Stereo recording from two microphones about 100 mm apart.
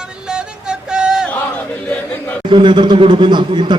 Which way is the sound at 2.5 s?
50° right (ahead or behind).